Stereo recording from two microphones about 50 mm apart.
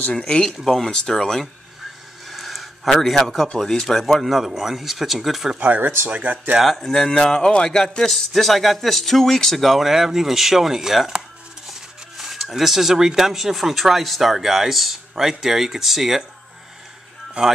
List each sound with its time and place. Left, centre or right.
0.7 s speech: centre
2.2 s a sound: centre
3.5 s speech: centre
5.6 s speech: right
6.6 s speech: centre
8.1 s speech: centre